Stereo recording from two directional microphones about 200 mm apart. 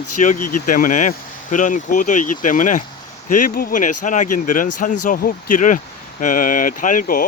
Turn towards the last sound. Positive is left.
turn(degrees=45)  # may be behind; listen again after turning